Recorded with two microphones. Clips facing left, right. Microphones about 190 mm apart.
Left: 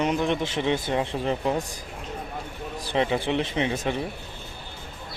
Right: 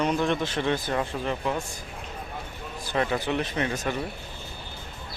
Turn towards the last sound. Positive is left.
turn(degrees=25)  # may be behind; listen again after turning